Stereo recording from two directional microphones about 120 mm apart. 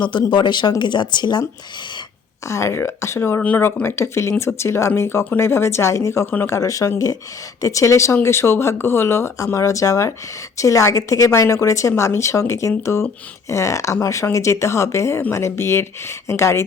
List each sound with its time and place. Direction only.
0.0 s speech: 40° left (ahead or behind)
2.5 s speech: 25° left (ahead or behind)